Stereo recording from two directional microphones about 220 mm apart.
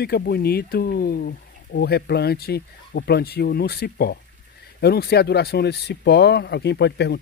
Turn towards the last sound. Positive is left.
turn(degrees=50)  # may be behind; listen again after turning